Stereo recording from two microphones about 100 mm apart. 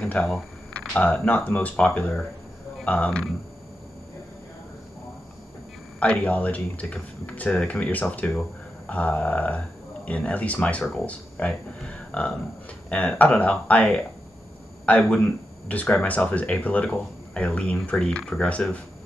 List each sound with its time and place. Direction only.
0.0 s speech: 10° left (ahead or behind)
5.9 s speech: 15° left (ahead or behind)